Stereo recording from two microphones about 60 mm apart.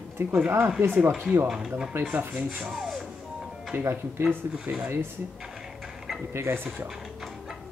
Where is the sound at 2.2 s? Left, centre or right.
Right.